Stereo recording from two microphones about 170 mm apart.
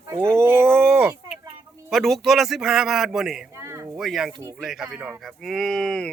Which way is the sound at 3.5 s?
15° right (ahead or behind).